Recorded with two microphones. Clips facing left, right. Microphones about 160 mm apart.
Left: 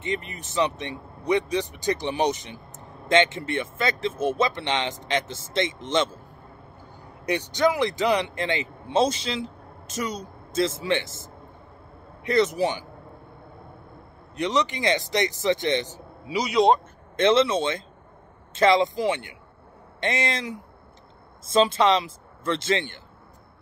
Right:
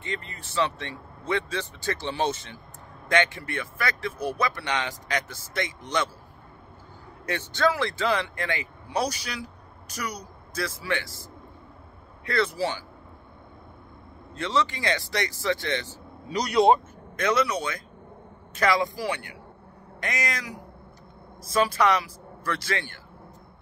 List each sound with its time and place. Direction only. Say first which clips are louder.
0.0 s speech: left 5 dB; 20° left (ahead or behind)
7.2 s speech: left 3 dB; 15° left (ahead or behind)
12.3 s speech: left 4 dB; 20° left (ahead or behind)
14.3 s speech: left 2 dB; 20° left (ahead or behind)
16.3 s speech: even; 5° left (ahead or behind)
17.2 s speech: left 5 dB; 25° left (ahead or behind)